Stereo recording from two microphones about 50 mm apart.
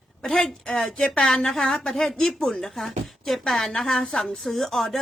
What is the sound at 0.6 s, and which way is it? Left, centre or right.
A woman's voice, left.